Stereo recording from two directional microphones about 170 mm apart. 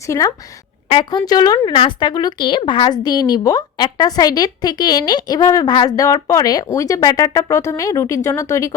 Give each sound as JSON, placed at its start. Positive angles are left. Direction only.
{"t": 0.1, "sound": "speech", "side_deg": 20}